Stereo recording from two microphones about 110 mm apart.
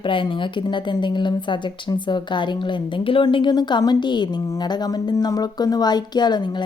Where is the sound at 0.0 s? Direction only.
50° left (ahead or behind).